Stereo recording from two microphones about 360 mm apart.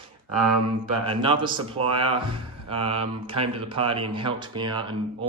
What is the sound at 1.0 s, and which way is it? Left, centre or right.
Speech, centre.